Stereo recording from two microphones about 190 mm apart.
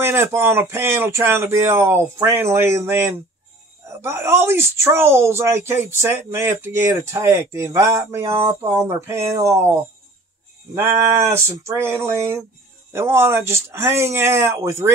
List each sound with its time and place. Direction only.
0.0 s speech: 15° right (ahead or behind)
10.7 s speech: 15° right (ahead or behind)